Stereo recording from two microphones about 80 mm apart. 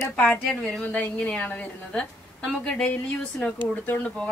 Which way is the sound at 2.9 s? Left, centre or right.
Centre.